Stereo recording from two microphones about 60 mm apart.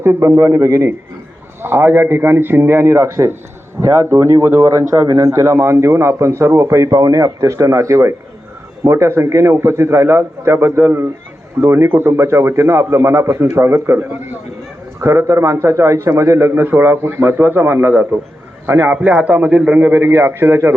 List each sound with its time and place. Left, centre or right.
0.0 s a man's voice: right
0.3 s a man's voice: right
1.6 s a man's voice: right
15.0 s a man's voice: right
16.6 s a man's voice: right